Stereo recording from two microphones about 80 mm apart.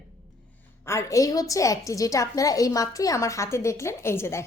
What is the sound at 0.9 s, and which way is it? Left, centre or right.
A woman's voice, left.